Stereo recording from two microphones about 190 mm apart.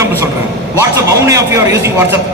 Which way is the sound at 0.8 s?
15° right (ahead or behind).